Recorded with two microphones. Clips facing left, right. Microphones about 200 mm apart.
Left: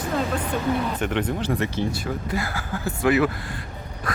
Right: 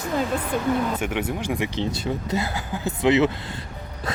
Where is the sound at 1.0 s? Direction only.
10° right (ahead or behind).